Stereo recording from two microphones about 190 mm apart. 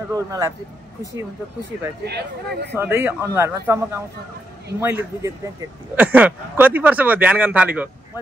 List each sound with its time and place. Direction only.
0.1 s speech: 20° right (ahead or behind)
2.0 s speech: 60° right (ahead or behind)
2.7 s speech: 10° right (ahead or behind)